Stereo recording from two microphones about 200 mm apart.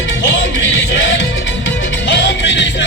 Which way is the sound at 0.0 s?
65° left (ahead or behind).